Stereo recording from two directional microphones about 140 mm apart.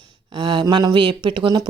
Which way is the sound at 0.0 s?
35° right (ahead or behind).